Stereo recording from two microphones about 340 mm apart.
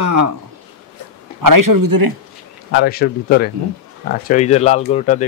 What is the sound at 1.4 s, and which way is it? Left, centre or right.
Speech, right.